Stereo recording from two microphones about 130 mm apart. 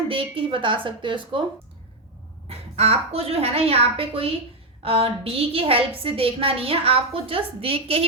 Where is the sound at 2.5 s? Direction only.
50° right (ahead or behind).